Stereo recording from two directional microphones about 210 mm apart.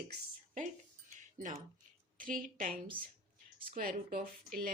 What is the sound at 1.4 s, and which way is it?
Speech, 35° right (ahead or behind).